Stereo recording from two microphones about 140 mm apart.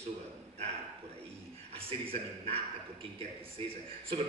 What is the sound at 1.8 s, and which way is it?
A man's voice, 40° right (ahead or behind).